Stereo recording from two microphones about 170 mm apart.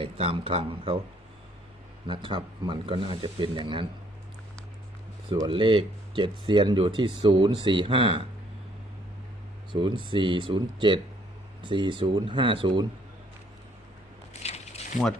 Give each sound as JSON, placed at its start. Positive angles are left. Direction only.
{"t": 0.0, "sound": "speech", "side_deg": -30}
{"t": 2.0, "sound": "speech", "side_deg": -30}
{"t": 5.3, "sound": "speech", "side_deg": -30}
{"t": 9.7, "sound": "speech", "side_deg": -30}
{"t": 14.4, "sound": "mechanisms", "side_deg": 40}